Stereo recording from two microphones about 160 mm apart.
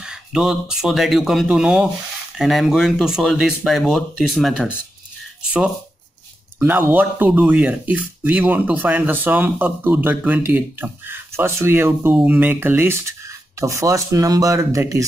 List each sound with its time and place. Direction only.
0.0 s speech: 5° right (ahead or behind)
6.6 s speech: 15° right (ahead or behind)